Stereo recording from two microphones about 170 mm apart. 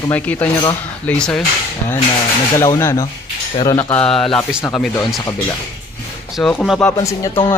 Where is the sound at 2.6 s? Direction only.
20° left (ahead or behind).